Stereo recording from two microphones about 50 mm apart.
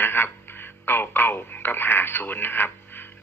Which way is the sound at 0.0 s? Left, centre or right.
Left.